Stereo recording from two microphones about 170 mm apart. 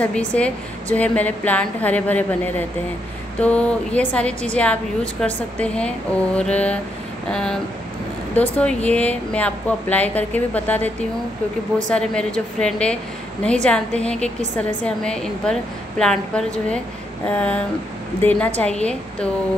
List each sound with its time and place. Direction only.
0.0 s a woman's voice: 10° left (ahead or behind)